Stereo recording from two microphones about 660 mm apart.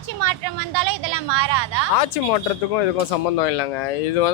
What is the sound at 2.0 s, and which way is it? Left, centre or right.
Speech, left.